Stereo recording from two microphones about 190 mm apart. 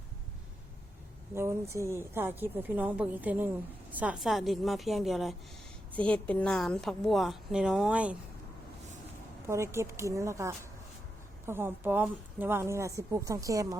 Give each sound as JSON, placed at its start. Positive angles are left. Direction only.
{"t": 1.4, "sound": "a woman's voice", "side_deg": -15}
{"t": 9.5, "sound": "a woman's voice", "side_deg": -15}